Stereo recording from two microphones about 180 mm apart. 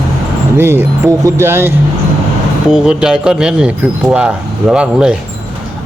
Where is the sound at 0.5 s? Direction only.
15° right (ahead or behind).